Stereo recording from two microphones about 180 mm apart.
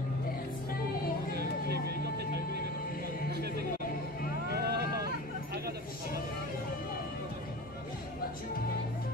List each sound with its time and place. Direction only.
1.3 s music: 65° right (ahead or behind)
3.3 s music: 65° right (ahead or behind)
4.5 s vehicle: 65° right (ahead or behind)